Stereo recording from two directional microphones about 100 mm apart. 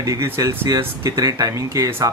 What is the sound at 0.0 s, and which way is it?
Speech, 30° right (ahead or behind).